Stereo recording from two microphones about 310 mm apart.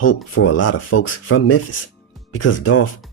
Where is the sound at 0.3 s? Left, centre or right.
Left.